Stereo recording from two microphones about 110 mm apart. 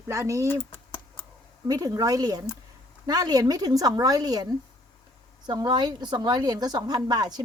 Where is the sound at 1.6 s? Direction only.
35° right (ahead or behind).